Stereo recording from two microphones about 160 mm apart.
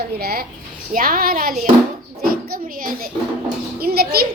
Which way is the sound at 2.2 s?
65° right (ahead or behind).